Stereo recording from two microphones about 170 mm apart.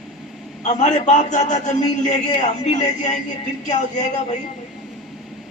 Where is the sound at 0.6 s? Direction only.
45° left (ahead or behind).